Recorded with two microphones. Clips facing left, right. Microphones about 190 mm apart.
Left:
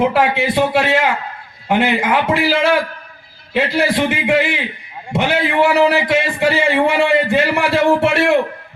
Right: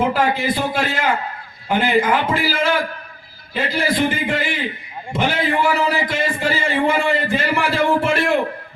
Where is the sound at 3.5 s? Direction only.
70° left (ahead or behind).